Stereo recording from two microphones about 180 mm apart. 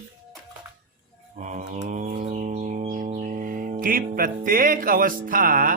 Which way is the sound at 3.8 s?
50° right (ahead or behind).